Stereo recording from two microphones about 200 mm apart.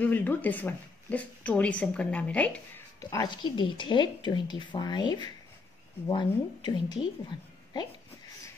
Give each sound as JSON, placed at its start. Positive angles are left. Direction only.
{"t": 0.0, "sound": "a woman's voice", "side_deg": 10}